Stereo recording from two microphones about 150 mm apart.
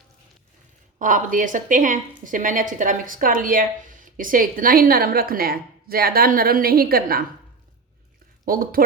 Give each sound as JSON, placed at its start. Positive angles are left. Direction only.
{"t": 0.9, "sound": "a woman's voice", "side_deg": -60}
{"t": 8.4, "sound": "a woman's voice", "side_deg": -70}